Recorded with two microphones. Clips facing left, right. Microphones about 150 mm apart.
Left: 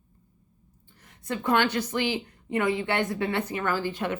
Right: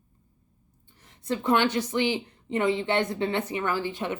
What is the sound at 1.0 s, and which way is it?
Speech, 25° right (ahead or behind).